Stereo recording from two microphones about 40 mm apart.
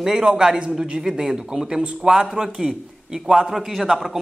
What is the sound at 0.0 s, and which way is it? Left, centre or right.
A man's voice, centre.